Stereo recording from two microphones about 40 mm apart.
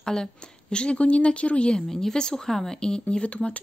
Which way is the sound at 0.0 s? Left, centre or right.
Centre.